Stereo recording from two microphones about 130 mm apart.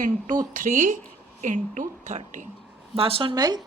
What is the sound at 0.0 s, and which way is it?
A woman's voice, 90° right.